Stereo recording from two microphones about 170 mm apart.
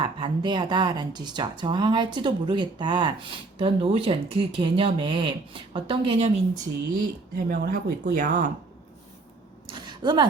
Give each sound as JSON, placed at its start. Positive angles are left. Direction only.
{"t": 0.0, "sound": "speech", "side_deg": -25}
{"t": 7.3, "sound": "speech", "side_deg": -55}
{"t": 8.1, "sound": "speech", "side_deg": -55}
{"t": 9.8, "sound": "a sound", "side_deg": -25}